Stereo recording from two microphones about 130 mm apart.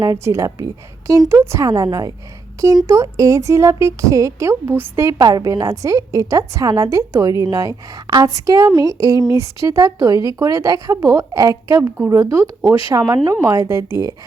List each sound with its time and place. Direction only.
0.0 s speech: 25° right (ahead or behind)